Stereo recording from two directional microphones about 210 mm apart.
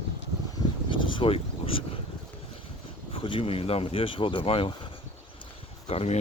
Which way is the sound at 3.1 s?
25° left (ahead or behind).